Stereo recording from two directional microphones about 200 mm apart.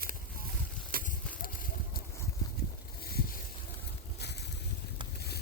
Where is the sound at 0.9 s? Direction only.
45° right (ahead or behind).